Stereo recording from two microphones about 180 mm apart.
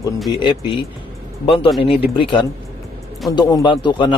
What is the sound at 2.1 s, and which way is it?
A man's voice, 25° left (ahead or behind).